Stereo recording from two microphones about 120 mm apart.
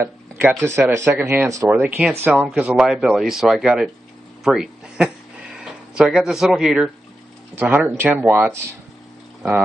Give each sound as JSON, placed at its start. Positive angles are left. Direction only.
{"t": 0.0, "sound": "speech", "side_deg": -15}